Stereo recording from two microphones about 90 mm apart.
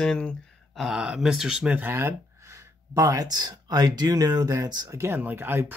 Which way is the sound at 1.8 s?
25° right (ahead or behind).